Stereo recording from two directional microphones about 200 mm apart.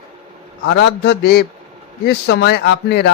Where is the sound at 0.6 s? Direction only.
60° left (ahead or behind).